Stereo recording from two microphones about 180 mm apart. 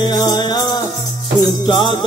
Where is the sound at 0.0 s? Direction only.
25° left (ahead or behind).